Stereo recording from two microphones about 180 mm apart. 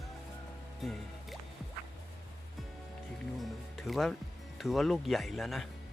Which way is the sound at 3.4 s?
Centre (ahead or behind).